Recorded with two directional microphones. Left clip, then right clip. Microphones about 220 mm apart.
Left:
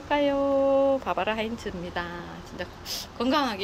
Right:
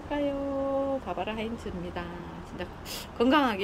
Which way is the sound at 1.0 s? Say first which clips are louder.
Left 6 dB; centre (ahead or behind).